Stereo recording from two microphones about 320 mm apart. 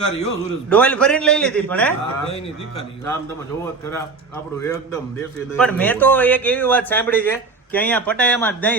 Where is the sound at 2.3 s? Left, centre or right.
Centre.